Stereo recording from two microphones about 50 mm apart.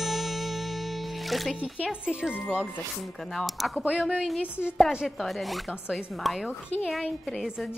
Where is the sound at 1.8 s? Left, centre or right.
Right.